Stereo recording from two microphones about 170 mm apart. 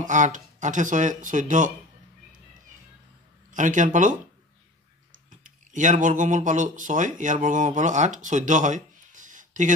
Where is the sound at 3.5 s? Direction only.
50° right (ahead or behind).